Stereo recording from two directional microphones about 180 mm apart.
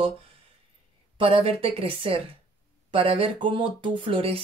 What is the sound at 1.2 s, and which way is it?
Speech, 30° right (ahead or behind).